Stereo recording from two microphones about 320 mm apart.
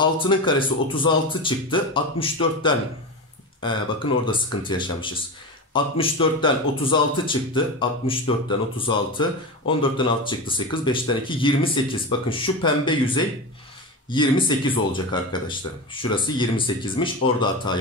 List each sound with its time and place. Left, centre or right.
0.0 s speech: centre